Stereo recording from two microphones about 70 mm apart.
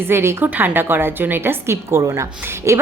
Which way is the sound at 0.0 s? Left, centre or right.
Right.